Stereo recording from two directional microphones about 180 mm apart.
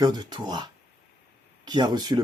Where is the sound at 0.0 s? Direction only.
25° right (ahead or behind).